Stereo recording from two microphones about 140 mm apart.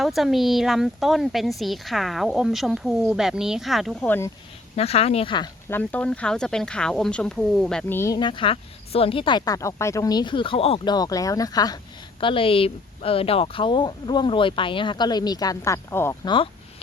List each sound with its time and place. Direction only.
0.0 s speech: centre (ahead or behind)
4.0 s speech: 15° left (ahead or behind)
4.8 s speech: 45° left (ahead or behind)
5.6 s speech: 15° left (ahead or behind)
7.9 s speech: 20° left (ahead or behind)
8.2 s a woman's voice: 35° left (ahead or behind)
10.9 s speech: 25° left (ahead or behind)
12.2 s a woman's voice: 40° left (ahead or behind); by 16.1 s 15° left (ahead or behind)
16.2 s a woman's voice: 35° left (ahead or behind)